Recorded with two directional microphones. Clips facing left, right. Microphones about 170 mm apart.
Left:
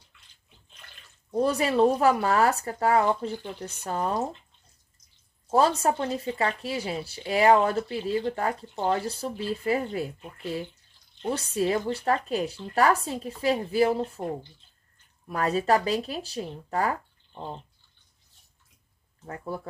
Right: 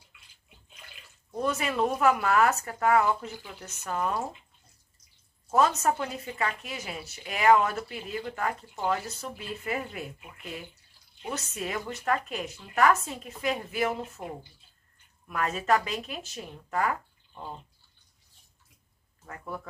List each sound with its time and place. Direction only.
0.1 s bathtub: 10° right (ahead or behind)
1.4 s speech: 35° left (ahead or behind)
5.5 s speech: 30° left (ahead or behind)
15.2 s speech: 35° left (ahead or behind)
19.2 s speech: 30° left (ahead or behind)